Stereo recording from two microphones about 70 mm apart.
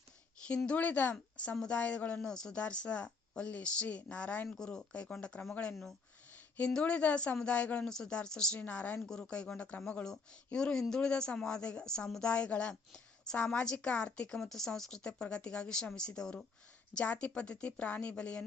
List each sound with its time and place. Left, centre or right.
0.4 s a woman's voice: centre
8.6 s speech: left
9.0 s a woman's voice: centre